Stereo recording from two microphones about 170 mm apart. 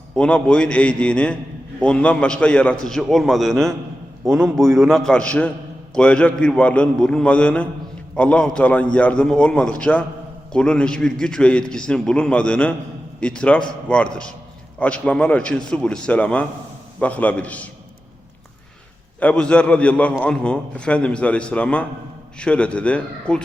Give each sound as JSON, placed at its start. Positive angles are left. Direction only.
{"t": 0.1, "sound": "a man's voice", "side_deg": 5}
{"t": 4.3, "sound": "a man's voice", "side_deg": -15}
{"t": 4.5, "sound": "a man's voice", "side_deg": 0}
{"t": 19.2, "sound": "a man's voice", "side_deg": 5}